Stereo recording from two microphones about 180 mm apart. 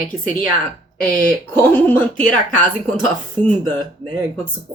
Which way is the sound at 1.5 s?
10° left (ahead or behind).